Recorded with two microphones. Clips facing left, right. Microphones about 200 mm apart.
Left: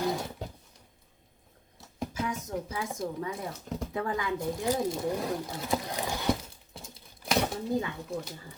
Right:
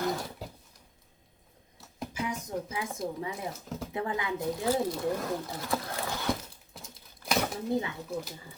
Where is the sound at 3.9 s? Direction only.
20° right (ahead or behind).